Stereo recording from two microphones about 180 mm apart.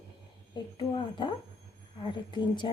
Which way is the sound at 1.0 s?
25° left (ahead or behind).